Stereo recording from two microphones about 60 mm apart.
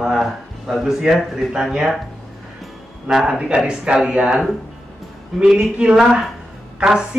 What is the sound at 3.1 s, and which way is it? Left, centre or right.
Speech, centre.